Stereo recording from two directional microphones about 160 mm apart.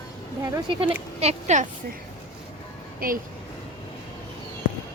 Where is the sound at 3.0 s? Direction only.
65° right (ahead or behind).